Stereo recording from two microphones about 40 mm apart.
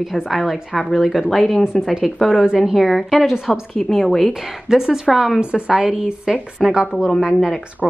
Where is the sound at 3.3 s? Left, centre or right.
Centre.